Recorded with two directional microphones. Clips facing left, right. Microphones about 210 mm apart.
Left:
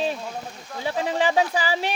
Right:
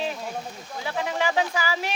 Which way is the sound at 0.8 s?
30° left (ahead or behind).